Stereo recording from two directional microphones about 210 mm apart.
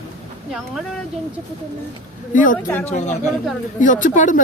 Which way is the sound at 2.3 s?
40° left (ahead or behind).